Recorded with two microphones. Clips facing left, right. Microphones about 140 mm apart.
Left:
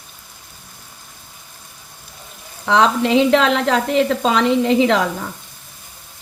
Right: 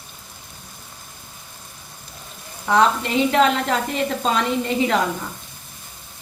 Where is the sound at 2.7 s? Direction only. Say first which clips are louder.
Left 3 dB; 90° left.